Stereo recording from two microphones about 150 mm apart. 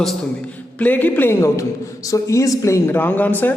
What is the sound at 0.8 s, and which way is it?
A man's voice, 10° left (ahead or behind).